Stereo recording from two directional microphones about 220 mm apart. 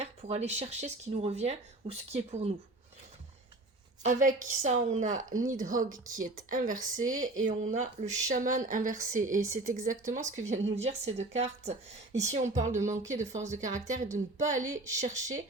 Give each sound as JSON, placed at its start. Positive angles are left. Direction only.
{"t": 0.0, "sound": "speech", "side_deg": -30}
{"t": 4.0, "sound": "a woman's voice", "side_deg": -35}